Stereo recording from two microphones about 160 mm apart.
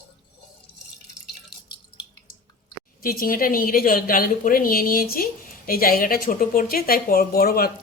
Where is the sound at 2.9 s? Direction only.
65° left (ahead or behind).